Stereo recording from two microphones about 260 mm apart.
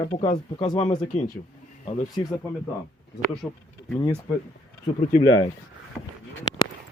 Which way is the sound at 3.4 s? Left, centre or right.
Centre.